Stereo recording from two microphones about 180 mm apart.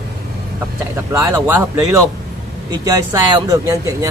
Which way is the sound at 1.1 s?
15° right (ahead or behind).